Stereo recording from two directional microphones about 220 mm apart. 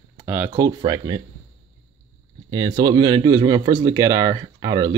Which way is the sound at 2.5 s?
20° right (ahead or behind).